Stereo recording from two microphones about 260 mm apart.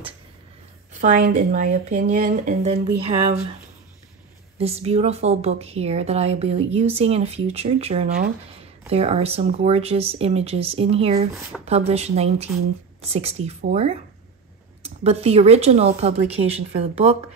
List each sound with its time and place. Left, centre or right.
1.0 s speech: right
4.6 s speech: right